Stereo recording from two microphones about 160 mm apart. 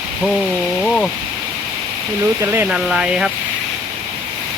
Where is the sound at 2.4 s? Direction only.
15° right (ahead or behind).